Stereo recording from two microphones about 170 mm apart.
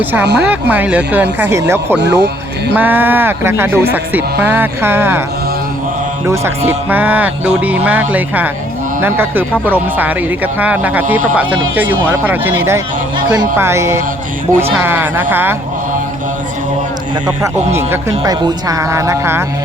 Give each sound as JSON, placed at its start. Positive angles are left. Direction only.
{"t": 0.0, "sound": "speech", "side_deg": -10}
{"t": 2.0, "sound": "speech", "side_deg": -90}
{"t": 2.7, "sound": "speech", "side_deg": -10}
{"t": 6.2, "sound": "speech", "side_deg": -15}
{"t": 9.0, "sound": "speech", "side_deg": -15}
{"t": 17.7, "sound": "speech", "side_deg": -15}